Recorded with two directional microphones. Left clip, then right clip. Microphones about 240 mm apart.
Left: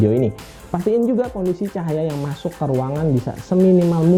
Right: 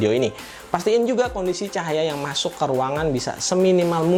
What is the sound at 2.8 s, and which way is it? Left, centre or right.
Speech, centre.